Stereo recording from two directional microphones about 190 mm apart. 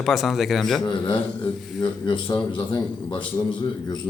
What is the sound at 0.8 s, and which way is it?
A man's voice, 25° left (ahead or behind).